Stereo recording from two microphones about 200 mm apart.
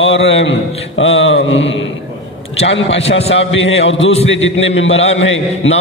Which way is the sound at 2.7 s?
65° left (ahead or behind).